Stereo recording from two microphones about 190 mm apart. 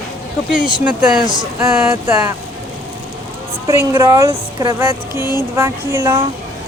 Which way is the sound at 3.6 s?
15° right (ahead or behind).